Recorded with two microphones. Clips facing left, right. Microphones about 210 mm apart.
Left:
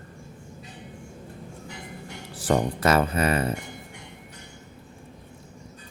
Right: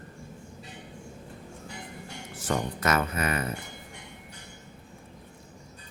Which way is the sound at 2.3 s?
35° left (ahead or behind).